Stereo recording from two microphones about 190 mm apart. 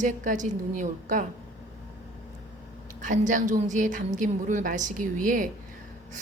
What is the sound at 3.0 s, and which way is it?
A woman's voice, 40° right (ahead or behind).